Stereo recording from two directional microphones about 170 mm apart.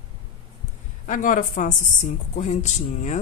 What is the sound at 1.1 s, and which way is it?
Speech, 50° left (ahead or behind).